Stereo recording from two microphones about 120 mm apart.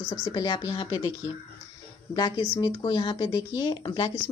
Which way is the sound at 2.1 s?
35° left (ahead or behind).